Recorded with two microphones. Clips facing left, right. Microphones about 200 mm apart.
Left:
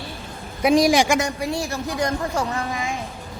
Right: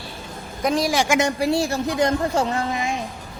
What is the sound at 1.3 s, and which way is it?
A woman's voice, 30° right (ahead or behind).